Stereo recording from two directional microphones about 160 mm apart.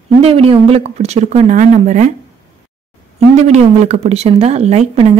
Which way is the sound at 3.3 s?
45° right (ahead or behind).